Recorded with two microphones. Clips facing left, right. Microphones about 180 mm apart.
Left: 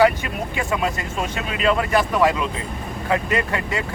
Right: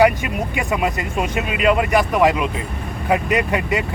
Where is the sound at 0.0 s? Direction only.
15° right (ahead or behind).